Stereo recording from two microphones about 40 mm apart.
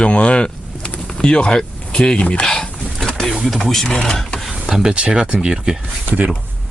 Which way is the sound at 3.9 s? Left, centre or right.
Centre.